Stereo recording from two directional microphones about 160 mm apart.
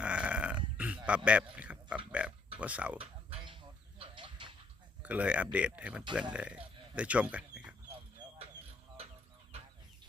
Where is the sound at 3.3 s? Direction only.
35° right (ahead or behind).